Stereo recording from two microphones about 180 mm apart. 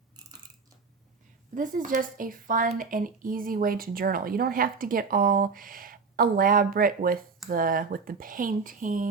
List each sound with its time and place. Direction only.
1.5 s speech: 45° right (ahead or behind)